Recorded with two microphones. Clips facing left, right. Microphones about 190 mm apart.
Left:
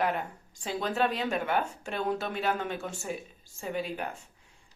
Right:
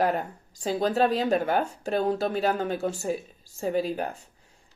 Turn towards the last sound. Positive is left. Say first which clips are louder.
# right 7 dB
turn(degrees=-35)  # may be behind; listen again after turning